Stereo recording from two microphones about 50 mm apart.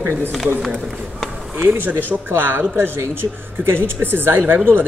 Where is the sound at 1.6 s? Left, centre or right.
Right.